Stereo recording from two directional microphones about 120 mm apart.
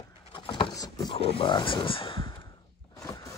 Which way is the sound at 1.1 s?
55° left (ahead or behind).